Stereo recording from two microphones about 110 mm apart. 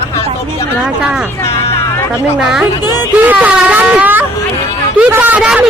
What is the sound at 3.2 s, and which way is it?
Speech, 15° right (ahead or behind).